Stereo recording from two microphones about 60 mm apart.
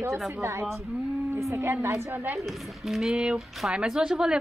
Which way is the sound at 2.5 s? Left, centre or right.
Centre.